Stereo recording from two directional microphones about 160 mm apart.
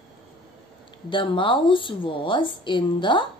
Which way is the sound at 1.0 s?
30° left (ahead or behind).